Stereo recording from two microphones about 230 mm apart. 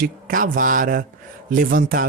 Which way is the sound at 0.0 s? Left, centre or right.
Right.